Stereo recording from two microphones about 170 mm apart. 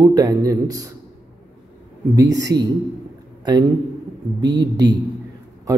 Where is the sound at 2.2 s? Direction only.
20° right (ahead or behind).